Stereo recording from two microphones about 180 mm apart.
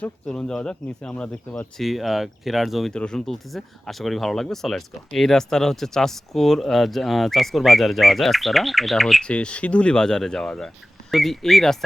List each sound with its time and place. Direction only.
0.0 s speech: 5° left (ahead or behind)